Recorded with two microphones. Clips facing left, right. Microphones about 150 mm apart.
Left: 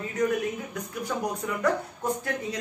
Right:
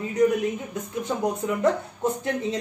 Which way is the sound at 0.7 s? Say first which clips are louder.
Right 3 dB; 25° right (ahead or behind).